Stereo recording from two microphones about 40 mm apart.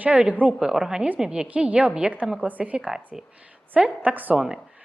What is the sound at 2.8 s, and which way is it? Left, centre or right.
A woman's voice, centre.